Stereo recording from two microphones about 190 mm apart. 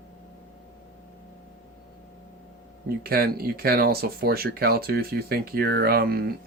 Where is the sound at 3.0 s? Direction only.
55° right (ahead or behind).